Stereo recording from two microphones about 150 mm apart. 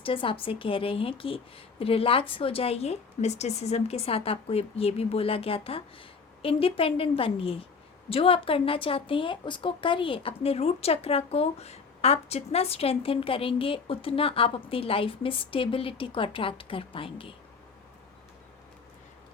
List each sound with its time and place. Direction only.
0.0 s a woman's voice: 35° left (ahead or behind)